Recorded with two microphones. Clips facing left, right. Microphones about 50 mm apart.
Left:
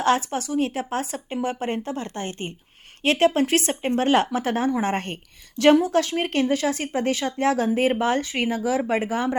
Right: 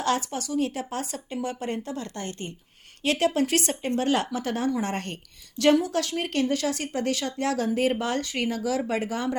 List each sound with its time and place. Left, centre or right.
0.0 s speech: left